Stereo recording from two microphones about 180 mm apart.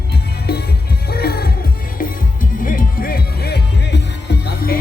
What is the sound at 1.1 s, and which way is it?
Music, 60° left (ahead or behind).